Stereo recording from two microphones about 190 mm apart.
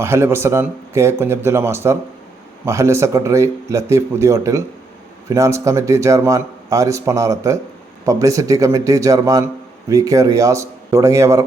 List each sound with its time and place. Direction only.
0.0 s a man's voice: 15° right (ahead or behind)